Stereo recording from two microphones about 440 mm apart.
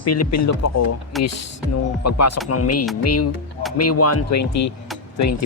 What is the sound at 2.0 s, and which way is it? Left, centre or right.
Speech, left.